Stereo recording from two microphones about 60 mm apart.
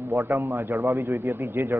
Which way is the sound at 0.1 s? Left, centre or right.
Right.